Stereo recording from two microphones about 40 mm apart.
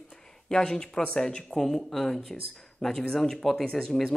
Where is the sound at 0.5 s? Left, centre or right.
Centre.